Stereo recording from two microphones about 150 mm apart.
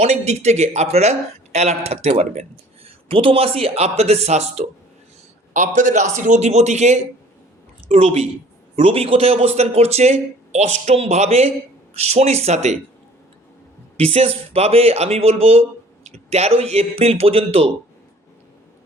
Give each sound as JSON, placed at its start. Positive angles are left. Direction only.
{"t": 0.0, "sound": "speech", "side_deg": -45}
{"t": 14.0, "sound": "speech", "side_deg": -40}